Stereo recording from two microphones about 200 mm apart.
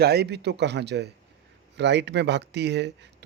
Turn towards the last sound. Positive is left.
turn(degrees=-60)  # may be behind; listen again after turning